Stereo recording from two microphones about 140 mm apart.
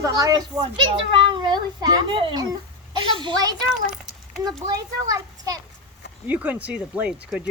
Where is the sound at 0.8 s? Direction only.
35° right (ahead or behind).